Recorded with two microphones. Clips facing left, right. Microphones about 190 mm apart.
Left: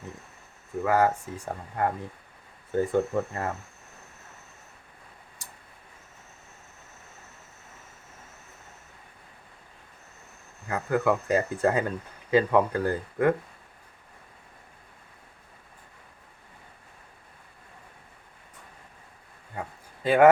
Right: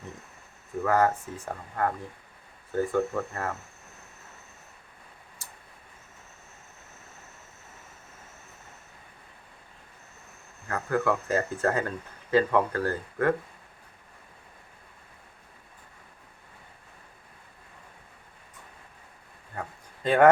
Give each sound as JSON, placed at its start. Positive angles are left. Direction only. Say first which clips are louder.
{"t": 0.8, "sound": "speech", "louder": "left 1 dB", "side_deg": 10}
{"t": 10.7, "sound": "speech", "louder": "left 2 dB", "side_deg": 15}
{"t": 19.5, "sound": "a sound", "louder": "left 1 dB", "side_deg": 5}